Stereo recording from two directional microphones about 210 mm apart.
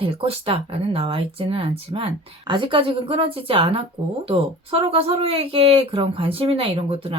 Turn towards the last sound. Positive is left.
turn(degrees=-25)  # may be behind; listen again after turning